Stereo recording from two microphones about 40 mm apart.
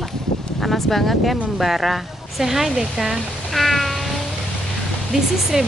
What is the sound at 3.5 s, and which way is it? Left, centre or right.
Meow, centre.